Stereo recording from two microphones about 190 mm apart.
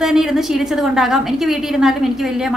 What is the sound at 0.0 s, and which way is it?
A woman's voice, centre (ahead or behind).